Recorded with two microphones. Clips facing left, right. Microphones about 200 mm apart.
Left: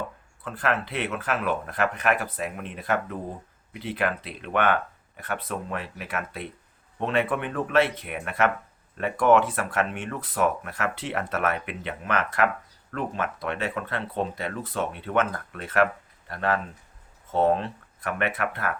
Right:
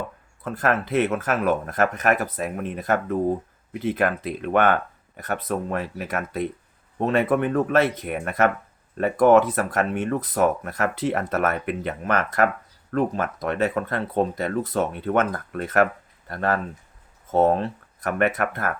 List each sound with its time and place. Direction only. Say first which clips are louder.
0.4 s speech: right 4 dB; 45° right (ahead or behind)